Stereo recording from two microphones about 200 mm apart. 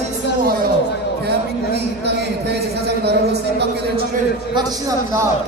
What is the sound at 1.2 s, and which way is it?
A man's voice, 55° right (ahead or behind).